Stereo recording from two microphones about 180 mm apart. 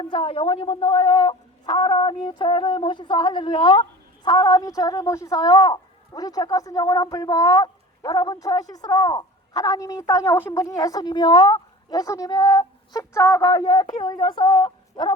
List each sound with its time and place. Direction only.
0.0 s speech: 30° left (ahead or behind)